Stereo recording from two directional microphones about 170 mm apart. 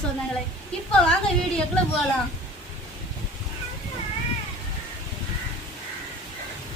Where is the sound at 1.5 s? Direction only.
5° left (ahead or behind).